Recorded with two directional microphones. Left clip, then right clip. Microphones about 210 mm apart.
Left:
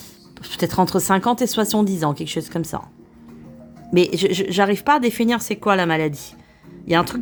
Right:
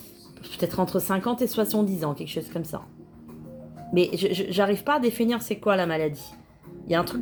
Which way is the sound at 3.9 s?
40° left (ahead or behind).